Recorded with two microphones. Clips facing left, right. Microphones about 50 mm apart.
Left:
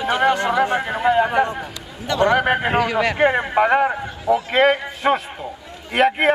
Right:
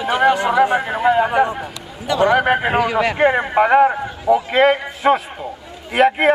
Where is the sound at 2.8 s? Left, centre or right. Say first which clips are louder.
Right 2 dB; centre.